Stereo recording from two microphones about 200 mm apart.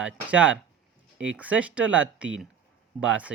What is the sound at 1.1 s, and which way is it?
Speech, 70° right (ahead or behind).